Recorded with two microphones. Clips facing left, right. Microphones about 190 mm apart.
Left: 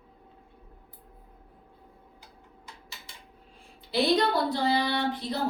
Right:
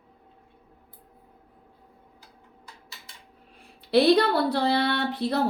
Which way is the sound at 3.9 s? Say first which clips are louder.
Right 5 dB; 65° right (ahead or behind).